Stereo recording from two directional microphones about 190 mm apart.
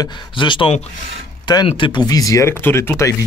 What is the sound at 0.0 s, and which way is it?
Speech, 25° left (ahead or behind).